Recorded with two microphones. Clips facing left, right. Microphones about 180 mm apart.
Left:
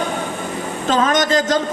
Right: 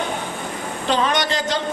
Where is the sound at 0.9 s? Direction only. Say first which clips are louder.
Left 4 dB; 45° left (ahead or behind).